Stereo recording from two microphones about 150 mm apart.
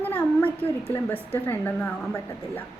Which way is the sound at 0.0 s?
10° left (ahead or behind).